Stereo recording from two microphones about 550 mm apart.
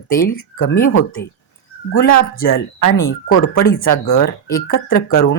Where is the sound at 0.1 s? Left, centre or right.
Centre.